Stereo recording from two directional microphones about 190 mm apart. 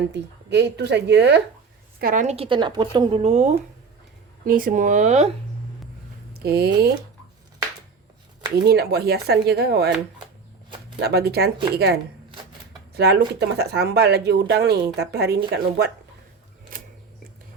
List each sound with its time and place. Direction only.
0.1 s speech: 65° right (ahead or behind)
2.0 s speech: 45° right (ahead or behind)
4.4 s speech: 45° right (ahead or behind)
6.4 s speech: 55° right (ahead or behind)
8.6 s speech: 55° right (ahead or behind)
11.0 s speech: 55° right (ahead or behind)
12.9 s speech: 60° right (ahead or behind)
16.7 s a sound: 45° right (ahead or behind)